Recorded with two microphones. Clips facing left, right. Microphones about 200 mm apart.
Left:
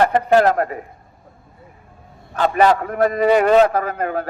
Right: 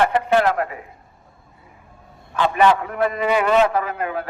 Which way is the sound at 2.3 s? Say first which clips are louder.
Left 1 dB; 40° left (ahead or behind).